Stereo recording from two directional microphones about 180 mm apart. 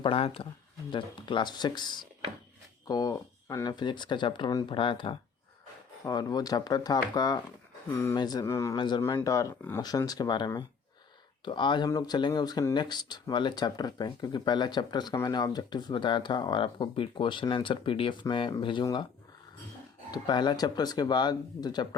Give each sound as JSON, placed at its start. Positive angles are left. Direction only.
{"t": 0.0, "sound": "speech", "side_deg": 30}
{"t": 20.1, "sound": "speech", "side_deg": 25}